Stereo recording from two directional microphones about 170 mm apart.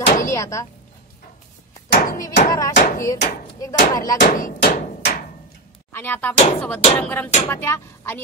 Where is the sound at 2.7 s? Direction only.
50° left (ahead or behind).